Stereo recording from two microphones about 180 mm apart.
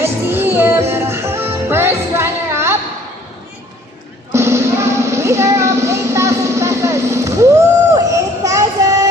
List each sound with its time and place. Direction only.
0.0 s music: 10° right (ahead or behind)
4.3 s music: 15° right (ahead or behind)
7.9 s a sound: 20° right (ahead or behind)